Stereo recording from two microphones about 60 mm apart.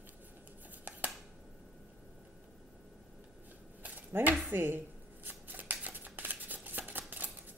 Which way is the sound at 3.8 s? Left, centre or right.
Right.